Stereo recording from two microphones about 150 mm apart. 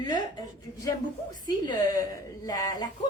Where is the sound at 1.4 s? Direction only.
30° left (ahead or behind).